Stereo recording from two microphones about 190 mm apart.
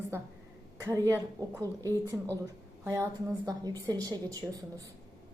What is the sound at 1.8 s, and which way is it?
A woman's voice, 15° right (ahead or behind).